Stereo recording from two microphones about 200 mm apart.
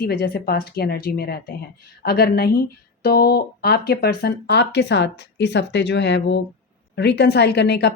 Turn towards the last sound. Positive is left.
turn(degrees=55)  # may be behind; listen again after turning